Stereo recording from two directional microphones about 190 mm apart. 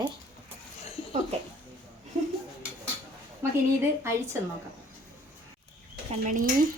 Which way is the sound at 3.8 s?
15° right (ahead or behind).